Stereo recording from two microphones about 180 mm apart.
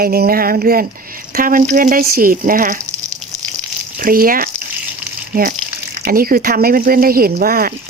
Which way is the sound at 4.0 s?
50° right (ahead or behind).